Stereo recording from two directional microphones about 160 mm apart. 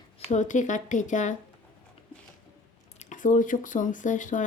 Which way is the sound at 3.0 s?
50° left (ahead or behind).